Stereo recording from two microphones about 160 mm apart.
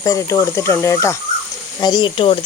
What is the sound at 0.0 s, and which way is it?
Speech, 20° left (ahead or behind).